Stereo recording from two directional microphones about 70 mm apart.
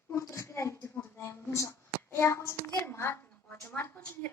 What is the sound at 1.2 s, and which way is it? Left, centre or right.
Hands, left.